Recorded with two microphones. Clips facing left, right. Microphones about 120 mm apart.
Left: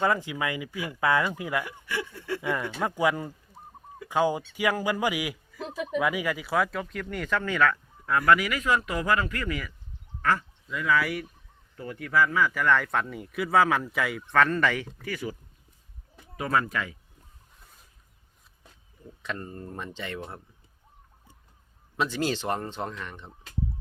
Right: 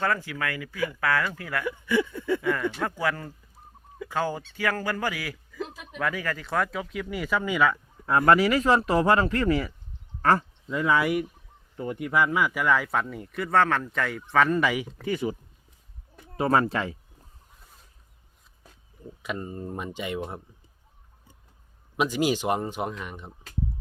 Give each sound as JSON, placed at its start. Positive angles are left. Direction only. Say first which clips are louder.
{"t": 0.0, "sound": "speech", "louder": "left 2 dB", "side_deg": 20}
{"t": 8.0, "sound": "speech", "louder": "right 3 dB", "side_deg": -30}
{"t": 15.0, "sound": "speech", "louder": "right 6 dB", "side_deg": -20}
{"t": 16.4, "sound": "speech", "louder": "right 4 dB", "side_deg": -30}
{"t": 19.2, "sound": "speech", "louder": "right 3 dB", "side_deg": -10}
{"t": 21.9, "sound": "speech", "louder": "right 3 dB", "side_deg": -15}